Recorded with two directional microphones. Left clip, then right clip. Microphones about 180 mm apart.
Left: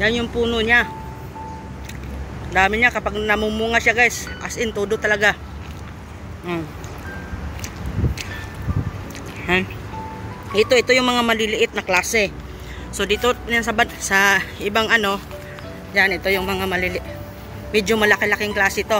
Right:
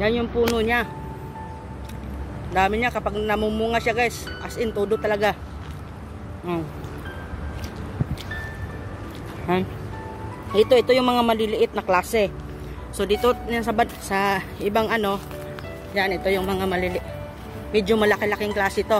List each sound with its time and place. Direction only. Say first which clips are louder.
0.0 s speech: left 2 dB; 10° right (ahead or behind)
2.5 s speech: left 5 dB; 5° right (ahead or behind)
10.5 s speech: left 1 dB; 20° right (ahead or behind)